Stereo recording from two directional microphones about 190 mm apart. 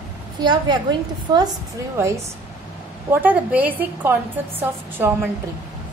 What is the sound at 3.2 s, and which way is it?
A woman's voice, 10° right (ahead or behind).